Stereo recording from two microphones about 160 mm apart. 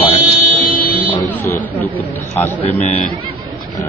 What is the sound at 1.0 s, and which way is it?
Speech, 10° left (ahead or behind).